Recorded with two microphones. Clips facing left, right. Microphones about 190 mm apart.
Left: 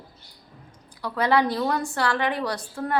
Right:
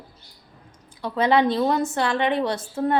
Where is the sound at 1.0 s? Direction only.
20° right (ahead or behind).